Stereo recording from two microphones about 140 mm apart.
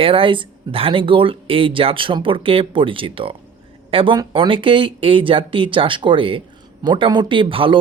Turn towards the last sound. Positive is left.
turn(degrees=-40)  # may be behind; listen again after turning